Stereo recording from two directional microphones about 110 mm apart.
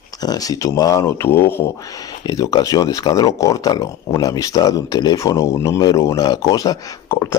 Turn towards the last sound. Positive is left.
turn(degrees=25)  # may be behind; listen again after turning